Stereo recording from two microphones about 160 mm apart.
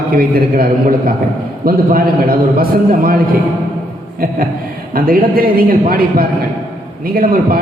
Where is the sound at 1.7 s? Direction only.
65° right (ahead or behind).